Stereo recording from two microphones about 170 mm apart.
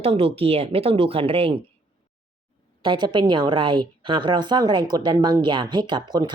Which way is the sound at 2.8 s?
25° right (ahead or behind).